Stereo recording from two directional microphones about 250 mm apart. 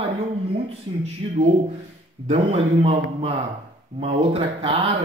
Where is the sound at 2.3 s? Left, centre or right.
Right.